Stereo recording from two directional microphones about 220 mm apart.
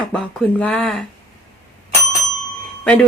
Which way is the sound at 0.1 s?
5° left (ahead or behind).